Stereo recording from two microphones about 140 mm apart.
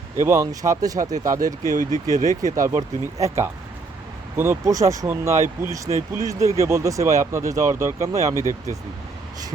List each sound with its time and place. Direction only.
0.3 s speech: 20° right (ahead or behind)
1.7 s speech: 70° right (ahead or behind)
2.4 s speech: 25° right (ahead or behind)
8.4 s speech: 25° left (ahead or behind)